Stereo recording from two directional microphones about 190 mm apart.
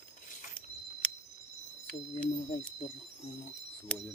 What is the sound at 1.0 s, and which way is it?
Cricket, 5° left (ahead or behind).